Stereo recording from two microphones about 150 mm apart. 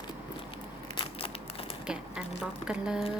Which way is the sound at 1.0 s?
40° left (ahead or behind).